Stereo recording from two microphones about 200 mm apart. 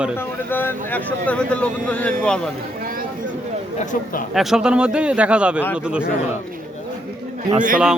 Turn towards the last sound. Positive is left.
turn(degrees=-40)  # may be behind; listen again after turning